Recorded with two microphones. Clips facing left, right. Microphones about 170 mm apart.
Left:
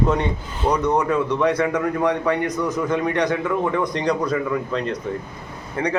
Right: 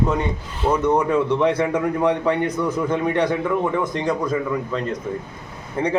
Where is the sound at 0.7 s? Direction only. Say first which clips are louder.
Right 2 dB; 10° right (ahead or behind).